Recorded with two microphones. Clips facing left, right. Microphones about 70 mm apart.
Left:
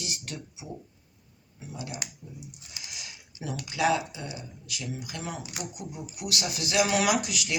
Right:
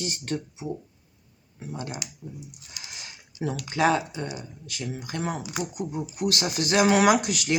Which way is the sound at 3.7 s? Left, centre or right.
Right.